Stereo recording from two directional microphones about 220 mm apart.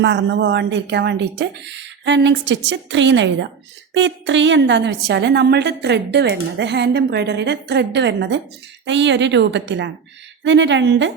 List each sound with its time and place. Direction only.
0.0 s a woman's voice: 55° right (ahead or behind)